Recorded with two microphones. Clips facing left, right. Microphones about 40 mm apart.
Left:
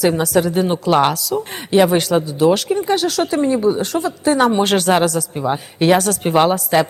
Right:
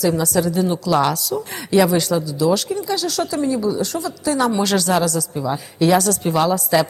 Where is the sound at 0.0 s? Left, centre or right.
Left.